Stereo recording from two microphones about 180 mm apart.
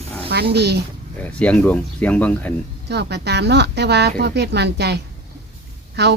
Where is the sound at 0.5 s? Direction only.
65° right (ahead or behind).